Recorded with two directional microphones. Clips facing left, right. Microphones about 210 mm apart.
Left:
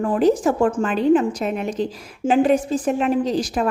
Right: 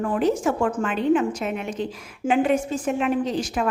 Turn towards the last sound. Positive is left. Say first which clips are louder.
# left 3 dB
turn(degrees=35)  # may be behind; listen again after turning